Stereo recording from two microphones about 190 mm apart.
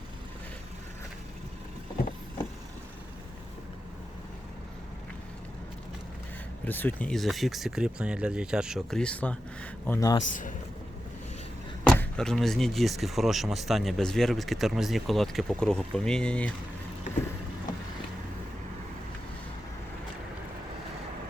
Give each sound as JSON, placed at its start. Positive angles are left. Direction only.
{"t": 6.7, "sound": "speech", "side_deg": 10}
{"t": 11.9, "sound": "speech", "side_deg": 5}